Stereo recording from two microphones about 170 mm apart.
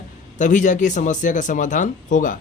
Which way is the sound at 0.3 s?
45° left (ahead or behind).